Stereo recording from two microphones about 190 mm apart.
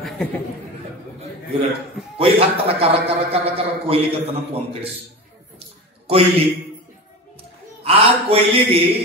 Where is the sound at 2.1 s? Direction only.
30° right (ahead or behind).